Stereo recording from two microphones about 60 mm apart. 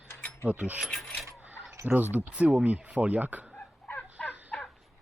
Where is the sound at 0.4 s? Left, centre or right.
Right.